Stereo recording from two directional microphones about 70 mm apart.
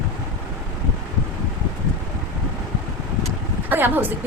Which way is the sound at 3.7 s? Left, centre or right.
Right.